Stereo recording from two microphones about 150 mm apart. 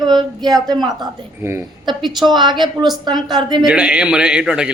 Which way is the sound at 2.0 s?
Centre (ahead or behind).